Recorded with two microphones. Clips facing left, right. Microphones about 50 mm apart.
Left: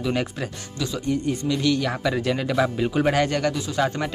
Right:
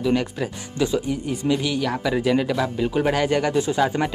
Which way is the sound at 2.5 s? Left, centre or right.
Centre.